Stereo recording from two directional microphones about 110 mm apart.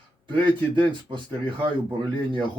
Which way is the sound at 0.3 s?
45° right (ahead or behind).